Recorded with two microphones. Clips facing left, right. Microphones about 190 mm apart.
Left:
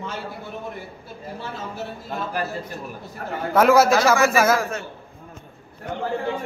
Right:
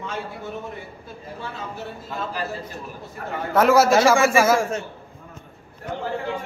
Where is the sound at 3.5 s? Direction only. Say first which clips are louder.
Left 1 dB; centre (ahead or behind).